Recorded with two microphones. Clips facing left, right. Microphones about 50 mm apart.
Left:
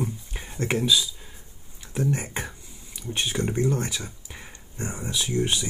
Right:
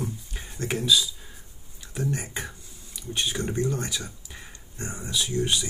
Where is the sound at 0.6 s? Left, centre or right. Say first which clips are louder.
Left 1 dB; left.